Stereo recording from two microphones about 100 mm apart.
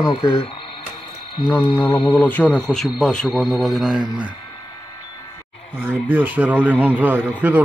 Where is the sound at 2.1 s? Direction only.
15° left (ahead or behind); by 4.2 s 10° right (ahead or behind).